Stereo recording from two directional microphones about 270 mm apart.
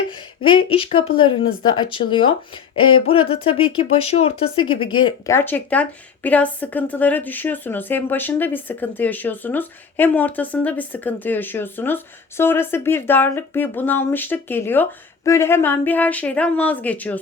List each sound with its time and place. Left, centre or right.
0.4 s a woman's voice: centre